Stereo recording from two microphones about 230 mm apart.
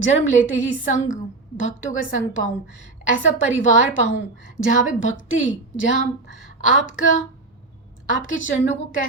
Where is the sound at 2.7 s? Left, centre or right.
Left.